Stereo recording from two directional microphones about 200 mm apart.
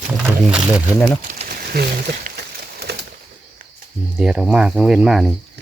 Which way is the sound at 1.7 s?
50° right (ahead or behind).